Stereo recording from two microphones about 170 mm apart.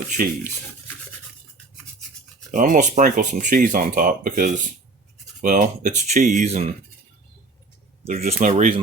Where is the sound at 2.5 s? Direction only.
50° right (ahead or behind).